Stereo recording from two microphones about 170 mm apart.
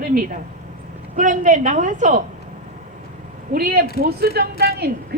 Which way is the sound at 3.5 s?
65° right (ahead or behind).